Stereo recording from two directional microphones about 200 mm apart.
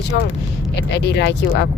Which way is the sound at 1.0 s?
60° left (ahead or behind).